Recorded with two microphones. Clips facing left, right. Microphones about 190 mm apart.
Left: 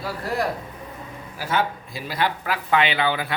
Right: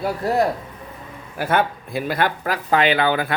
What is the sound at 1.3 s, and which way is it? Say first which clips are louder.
Speech: right 4 dB; 60° right (ahead or behind).